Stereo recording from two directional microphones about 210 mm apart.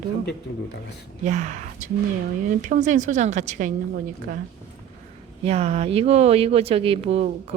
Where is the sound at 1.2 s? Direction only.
35° right (ahead or behind).